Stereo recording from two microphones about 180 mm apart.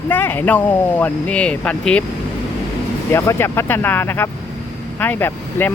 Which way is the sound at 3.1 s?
15° left (ahead or behind).